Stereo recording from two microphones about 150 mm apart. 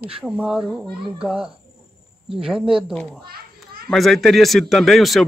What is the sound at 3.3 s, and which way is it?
Children playing, 90° right.